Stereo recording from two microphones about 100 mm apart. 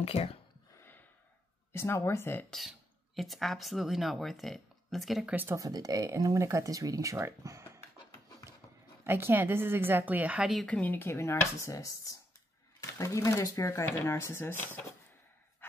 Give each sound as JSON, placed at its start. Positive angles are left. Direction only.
{"t": 0.0, "sound": "speech", "side_deg": 80}
{"t": 1.7, "sound": "speech", "side_deg": 25}
{"t": 3.2, "sound": "speech", "side_deg": 0}
{"t": 5.3, "sound": "a woman's voice", "side_deg": -20}
{"t": 5.6, "sound": "speech", "side_deg": -40}
{"t": 9.0, "sound": "a woman's voice", "side_deg": -20}
{"t": 10.7, "sound": "speech", "side_deg": 20}